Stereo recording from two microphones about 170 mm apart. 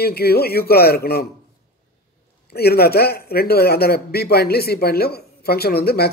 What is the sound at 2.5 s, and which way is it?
A man's voice, 65° left (ahead or behind).